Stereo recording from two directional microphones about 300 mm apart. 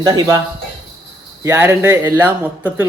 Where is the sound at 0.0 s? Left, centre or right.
Centre.